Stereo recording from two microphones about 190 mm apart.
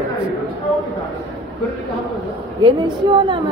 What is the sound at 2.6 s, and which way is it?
Speech, 25° right (ahead or behind).